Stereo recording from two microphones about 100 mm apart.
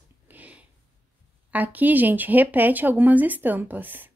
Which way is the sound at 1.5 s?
15° right (ahead or behind).